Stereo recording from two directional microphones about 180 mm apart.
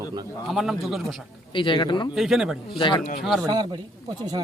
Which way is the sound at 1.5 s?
30° left (ahead or behind).